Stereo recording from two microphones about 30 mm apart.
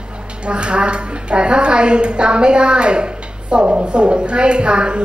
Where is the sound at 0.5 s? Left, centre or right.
Right.